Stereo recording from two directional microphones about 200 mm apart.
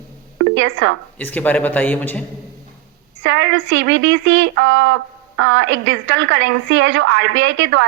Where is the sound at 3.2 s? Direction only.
65° right (ahead or behind).